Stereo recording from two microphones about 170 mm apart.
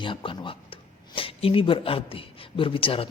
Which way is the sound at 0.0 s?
30° left (ahead or behind).